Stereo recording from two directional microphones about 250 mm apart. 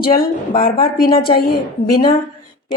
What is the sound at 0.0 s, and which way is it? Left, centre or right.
Speech, left.